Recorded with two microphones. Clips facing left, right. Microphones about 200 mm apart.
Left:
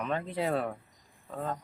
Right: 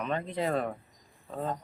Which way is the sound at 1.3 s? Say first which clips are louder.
Right 2 dB; 20° right (ahead or behind).